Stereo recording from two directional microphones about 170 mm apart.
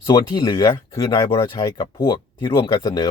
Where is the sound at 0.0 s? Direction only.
25° left (ahead or behind).